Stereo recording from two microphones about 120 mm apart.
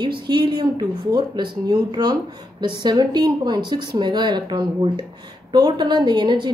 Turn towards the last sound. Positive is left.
turn(degrees=-40)  # may be behind; listen again after turning